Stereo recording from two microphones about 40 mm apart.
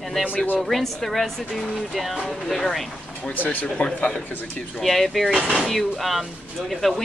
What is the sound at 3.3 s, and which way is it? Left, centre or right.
Speech, left.